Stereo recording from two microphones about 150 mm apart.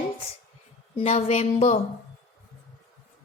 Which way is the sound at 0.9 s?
45° left (ahead or behind).